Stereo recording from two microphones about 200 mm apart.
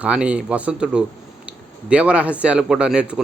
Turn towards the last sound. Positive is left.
turn(degrees=-5)  # may be behind; listen again after turning